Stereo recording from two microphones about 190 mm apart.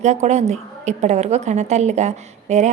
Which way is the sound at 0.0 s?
35° right (ahead or behind).